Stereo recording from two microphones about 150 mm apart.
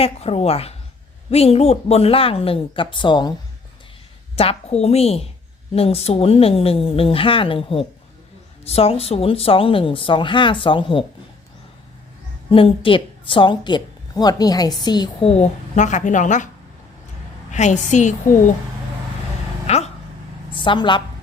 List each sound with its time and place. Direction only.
0.0 s a woman's voice: 45° left (ahead or behind)
4.4 s a woman's voice: 40° left (ahead or behind)
12.5 s a woman's voice: 35° left (ahead or behind)
15.2 s a woman's voice: 45° left (ahead or behind)
17.5 s a woman's voice: 50° left (ahead or behind)
19.6 s a sound: 45° left (ahead or behind)
20.5 s a woman's voice: 35° left (ahead or behind)